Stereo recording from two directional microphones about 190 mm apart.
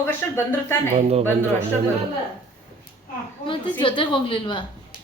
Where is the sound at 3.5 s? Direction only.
25° left (ahead or behind).